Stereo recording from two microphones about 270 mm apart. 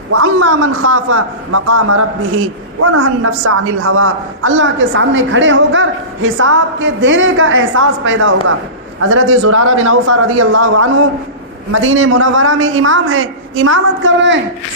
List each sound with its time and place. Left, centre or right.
0.1 s a woman's voice: right